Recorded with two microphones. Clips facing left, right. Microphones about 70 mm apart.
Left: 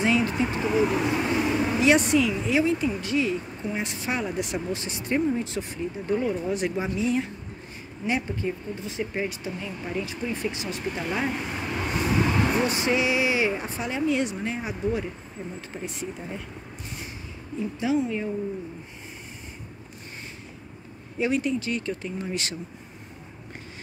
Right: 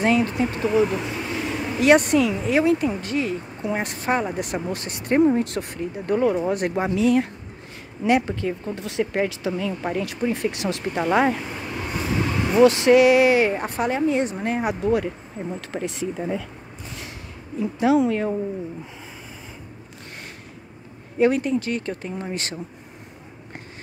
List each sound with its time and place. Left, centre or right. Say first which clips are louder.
0.0 s vehicle: right 3 dB; right
0.5 s speech: right 3 dB; centre
1.0 s speech: left 4 dB; centre
1.5 s vehicle: left 3 dB; centre
1.8 s speech: right 5 dB; right
8.1 s speech: right 7 dB; right
9.8 s speech: right 4 dB; right
11.6 s vehicle: left 3 dB; centre
12.6 s a woman's voice: right 10 dB; right
14.5 s speech: right 7 dB; right
15.7 s speech: right 8 dB; right
17.7 s speech: right 7 dB; right
21.2 s speech: right 6 dB; right